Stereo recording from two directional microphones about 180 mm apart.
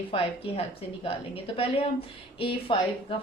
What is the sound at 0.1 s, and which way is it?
A woman's voice, 30° left (ahead or behind).